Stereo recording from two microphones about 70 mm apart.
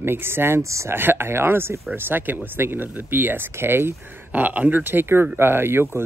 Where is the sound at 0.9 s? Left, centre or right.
Right.